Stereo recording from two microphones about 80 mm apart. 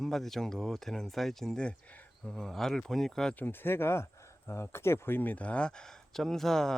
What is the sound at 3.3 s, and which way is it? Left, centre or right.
Speech, left.